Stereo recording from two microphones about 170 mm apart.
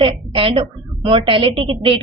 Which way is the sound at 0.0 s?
30° right (ahead or behind).